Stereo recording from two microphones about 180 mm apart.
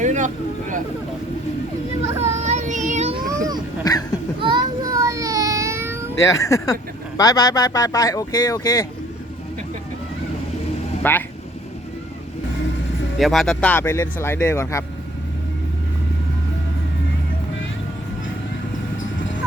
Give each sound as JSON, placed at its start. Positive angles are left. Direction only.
{"t": 0.0, "sound": "vehicle", "side_deg": -40}
{"t": 2.1, "sound": "child singing", "side_deg": -40}
{"t": 3.2, "sound": "a sound", "side_deg": -20}
{"t": 3.9, "sound": "a sound", "side_deg": 20}
{"t": 4.4, "sound": "child singing", "side_deg": -25}
{"t": 6.1, "sound": "speech", "side_deg": 15}
{"t": 11.0, "sound": "speech", "side_deg": 10}
{"t": 13.1, "sound": "speech", "side_deg": 0}